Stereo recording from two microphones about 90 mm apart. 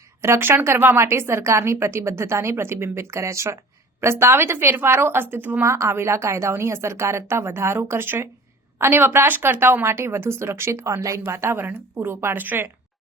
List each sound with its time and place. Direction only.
0.2 s speech: 30° right (ahead or behind)